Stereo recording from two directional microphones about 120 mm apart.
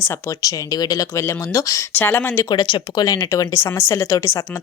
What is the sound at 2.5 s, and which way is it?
Speech, 40° left (ahead or behind).